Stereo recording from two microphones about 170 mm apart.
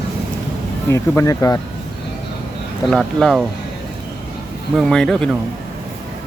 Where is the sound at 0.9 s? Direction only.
15° left (ahead or behind).